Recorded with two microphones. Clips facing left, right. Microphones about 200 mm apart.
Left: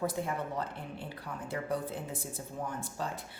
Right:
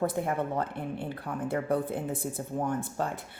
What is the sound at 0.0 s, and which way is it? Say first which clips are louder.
Speech: right 5 dB; 55° right (ahead or behind).